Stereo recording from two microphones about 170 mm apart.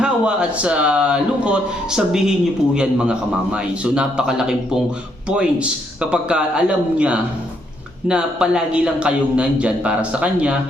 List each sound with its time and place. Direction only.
0.0 s a man's voice: 5° right (ahead or behind)